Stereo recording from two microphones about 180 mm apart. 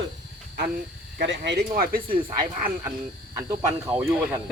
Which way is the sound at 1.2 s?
75° right (ahead or behind).